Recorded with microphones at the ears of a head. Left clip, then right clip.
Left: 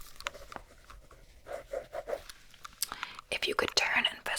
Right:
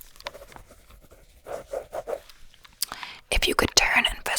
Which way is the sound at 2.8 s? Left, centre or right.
Right.